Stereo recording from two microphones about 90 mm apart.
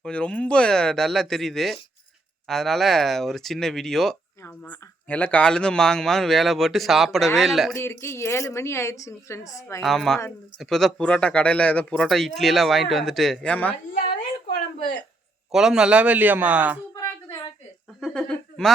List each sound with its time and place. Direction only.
0.0 s speech: 10° left (ahead or behind)
5.0 s speech: 15° left (ahead or behind); by 7.7 s centre (ahead or behind)
7.8 s a woman's voice: 30° left (ahead or behind)
9.8 s speech: 5° left (ahead or behind)
15.5 s a man's voice: 5° right (ahead or behind)
18.0 s speech: 10° left (ahead or behind)